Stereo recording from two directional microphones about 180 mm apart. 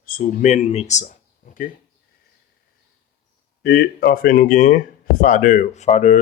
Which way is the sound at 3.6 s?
60° left (ahead or behind).